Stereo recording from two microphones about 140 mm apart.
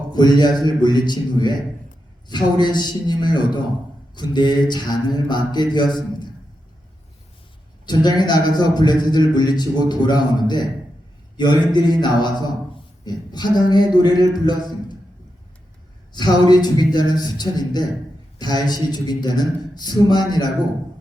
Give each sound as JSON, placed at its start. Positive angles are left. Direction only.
{"t": 0.1, "sound": "a man's voice", "side_deg": 30}
{"t": 7.9, "sound": "a man's voice", "side_deg": 30}
{"t": 16.1, "sound": "a man's voice", "side_deg": 30}